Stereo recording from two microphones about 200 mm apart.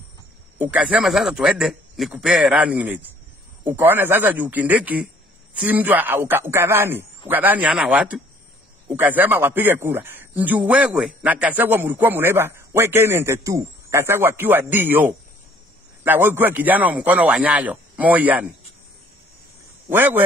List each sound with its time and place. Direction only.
0.6 s a man's voice: 5° right (ahead or behind)
19.9 s a man's voice: 10° right (ahead or behind)